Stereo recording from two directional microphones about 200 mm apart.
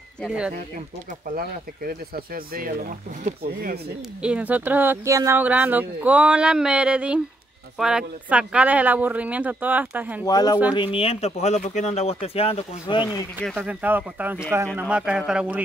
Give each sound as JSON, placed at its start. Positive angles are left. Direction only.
{"t": 0.2, "sound": "a man's voice", "side_deg": -5}
{"t": 1.3, "sound": "speech", "side_deg": -45}
{"t": 4.2, "sound": "speech", "side_deg": -5}
{"t": 10.2, "sound": "speech", "side_deg": 20}
{"t": 13.5, "sound": "a man's voice", "side_deg": -5}